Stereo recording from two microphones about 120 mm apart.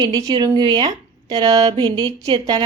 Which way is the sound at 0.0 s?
30° right (ahead or behind).